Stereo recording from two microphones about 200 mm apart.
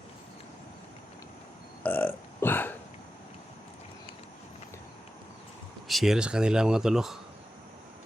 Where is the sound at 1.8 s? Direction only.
10° left (ahead or behind).